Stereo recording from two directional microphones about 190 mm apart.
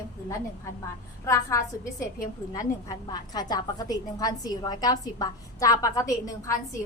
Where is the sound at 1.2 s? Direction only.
15° left (ahead or behind).